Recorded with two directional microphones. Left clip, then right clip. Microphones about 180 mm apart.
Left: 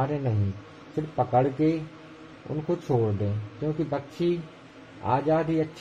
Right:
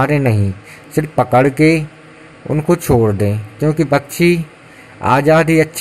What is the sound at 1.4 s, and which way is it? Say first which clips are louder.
Speech: right 13 dB; 40° right (ahead or behind).